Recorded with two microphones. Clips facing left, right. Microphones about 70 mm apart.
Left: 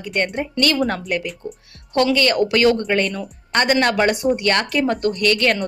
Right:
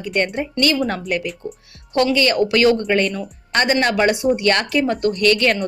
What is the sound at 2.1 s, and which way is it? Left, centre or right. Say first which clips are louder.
A woman's voice: right 1 dB; left.